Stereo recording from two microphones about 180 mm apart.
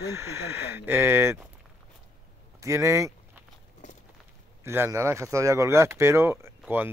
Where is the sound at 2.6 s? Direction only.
15° right (ahead or behind).